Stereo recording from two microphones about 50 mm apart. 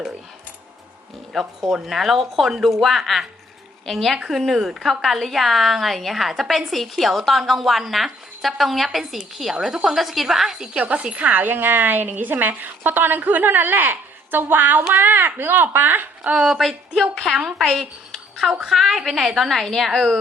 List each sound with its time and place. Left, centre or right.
1.3 s a woman's voice: centre
10.8 s speech: right
11.4 s a woman's voice: right
16.3 s a woman's voice: centre